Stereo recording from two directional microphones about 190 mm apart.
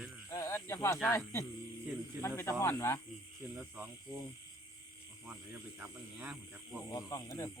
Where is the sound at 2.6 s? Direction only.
15° left (ahead or behind).